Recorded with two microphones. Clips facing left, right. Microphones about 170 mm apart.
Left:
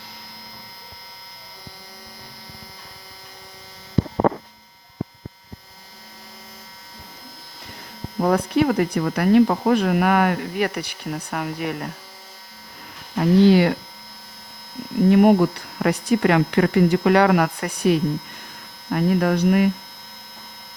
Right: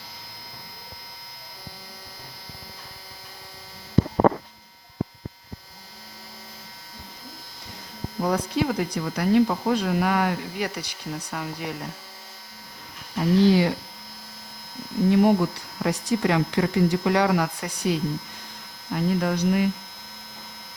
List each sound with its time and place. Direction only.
8.2 s speech: 60° left (ahead or behind)
13.1 s speech: 60° left (ahead or behind)
15.1 s speech: 60° left (ahead or behind)